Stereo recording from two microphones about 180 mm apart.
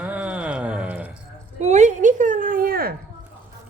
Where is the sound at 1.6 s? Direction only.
40° right (ahead or behind).